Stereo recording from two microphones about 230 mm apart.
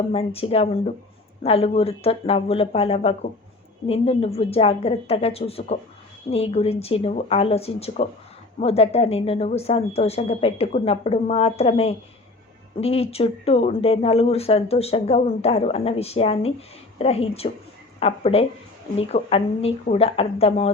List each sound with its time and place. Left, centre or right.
0.1 s speech: left